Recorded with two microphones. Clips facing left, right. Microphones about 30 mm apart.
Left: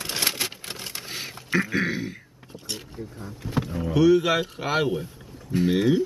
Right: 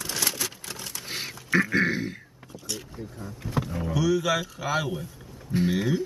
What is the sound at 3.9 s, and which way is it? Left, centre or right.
Speech, left.